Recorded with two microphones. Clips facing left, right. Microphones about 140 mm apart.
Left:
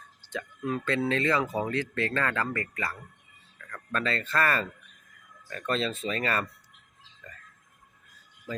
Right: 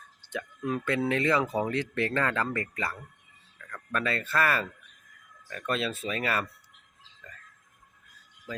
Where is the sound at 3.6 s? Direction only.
5° right (ahead or behind).